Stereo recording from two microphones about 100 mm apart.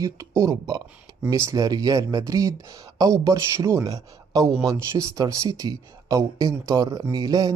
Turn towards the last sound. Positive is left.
turn(degrees=-40)  # may be behind; listen again after turning